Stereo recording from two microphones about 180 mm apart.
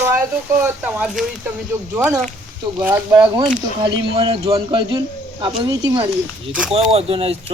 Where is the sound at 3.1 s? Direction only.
20° right (ahead or behind).